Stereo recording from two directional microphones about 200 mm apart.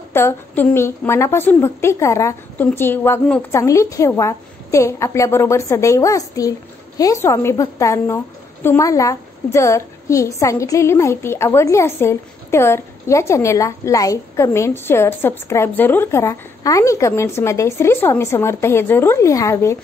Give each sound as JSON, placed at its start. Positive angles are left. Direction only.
{"t": 0.1, "sound": "a woman's voice", "side_deg": 10}